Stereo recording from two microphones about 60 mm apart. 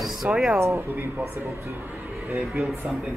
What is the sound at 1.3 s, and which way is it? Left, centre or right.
Speech, right.